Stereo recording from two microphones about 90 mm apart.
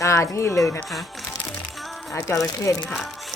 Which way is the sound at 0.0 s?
35° left (ahead or behind).